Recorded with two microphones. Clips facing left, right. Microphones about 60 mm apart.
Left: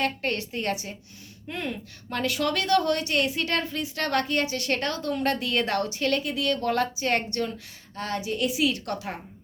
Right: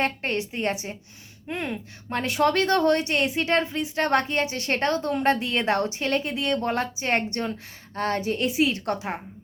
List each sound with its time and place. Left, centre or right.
0.0 s a woman's voice: right
7.9 s a woman's voice: right